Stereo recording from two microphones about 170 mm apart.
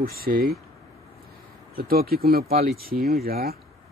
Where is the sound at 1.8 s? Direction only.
60° right (ahead or behind).